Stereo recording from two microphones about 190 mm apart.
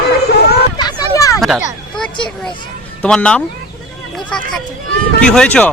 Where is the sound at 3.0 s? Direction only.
5° left (ahead or behind).